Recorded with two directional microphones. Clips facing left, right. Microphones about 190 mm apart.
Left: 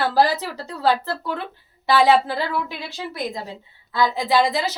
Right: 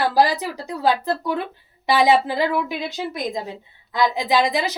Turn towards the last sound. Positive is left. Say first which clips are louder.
# even
turn(degrees=-15)  # may be behind; listen again after turning